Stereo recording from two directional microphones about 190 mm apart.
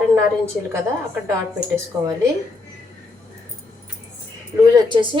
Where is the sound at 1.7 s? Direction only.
15° right (ahead or behind).